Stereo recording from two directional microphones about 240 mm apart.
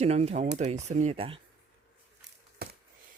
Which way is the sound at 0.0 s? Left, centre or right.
Right.